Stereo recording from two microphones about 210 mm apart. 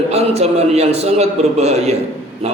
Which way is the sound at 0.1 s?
30° right (ahead or behind).